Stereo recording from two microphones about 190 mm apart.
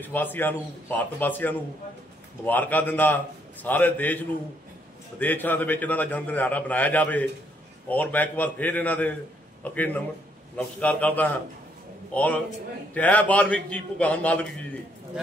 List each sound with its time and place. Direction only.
0.0 s a man's voice: 10° left (ahead or behind)
5.2 s a man's voice: 10° left (ahead or behind)